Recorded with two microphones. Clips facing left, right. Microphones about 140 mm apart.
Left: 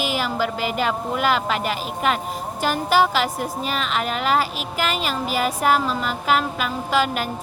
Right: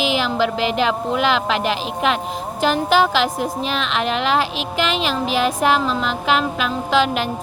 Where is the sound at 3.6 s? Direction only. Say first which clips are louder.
Even; 80° right.